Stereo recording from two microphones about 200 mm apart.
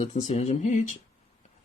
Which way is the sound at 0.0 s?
35° left (ahead or behind).